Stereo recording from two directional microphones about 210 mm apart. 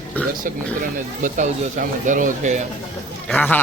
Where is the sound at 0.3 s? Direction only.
40° right (ahead or behind).